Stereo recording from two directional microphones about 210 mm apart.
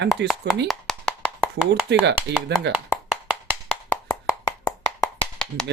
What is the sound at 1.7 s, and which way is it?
Speech, 55° right (ahead or behind).